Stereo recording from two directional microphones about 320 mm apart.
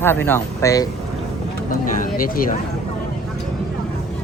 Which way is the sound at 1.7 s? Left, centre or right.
Left.